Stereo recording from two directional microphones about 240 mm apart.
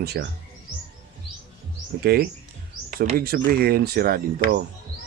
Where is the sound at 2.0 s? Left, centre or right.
Right.